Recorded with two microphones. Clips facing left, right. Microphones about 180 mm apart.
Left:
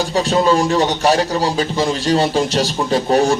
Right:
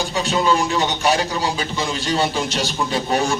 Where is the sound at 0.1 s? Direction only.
35° left (ahead or behind).